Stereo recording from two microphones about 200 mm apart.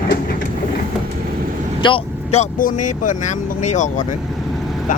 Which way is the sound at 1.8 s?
30° left (ahead or behind).